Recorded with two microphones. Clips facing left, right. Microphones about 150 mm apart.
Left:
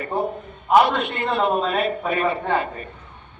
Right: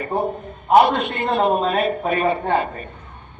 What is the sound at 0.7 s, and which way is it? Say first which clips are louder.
A man's voice: right 2 dB; 40° right (ahead or behind).